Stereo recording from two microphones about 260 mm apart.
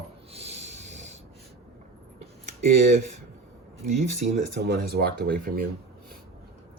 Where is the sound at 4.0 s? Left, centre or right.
Right.